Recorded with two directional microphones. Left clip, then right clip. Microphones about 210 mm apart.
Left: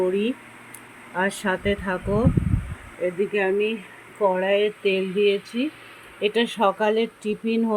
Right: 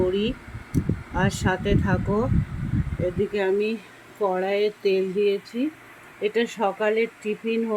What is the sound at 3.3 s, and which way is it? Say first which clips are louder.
Speech: left 2 dB; 5° right (ahead or behind).